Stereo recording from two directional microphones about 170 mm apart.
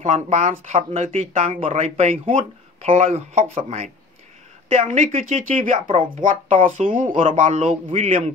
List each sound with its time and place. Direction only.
0.0 s speech: 45° right (ahead or behind)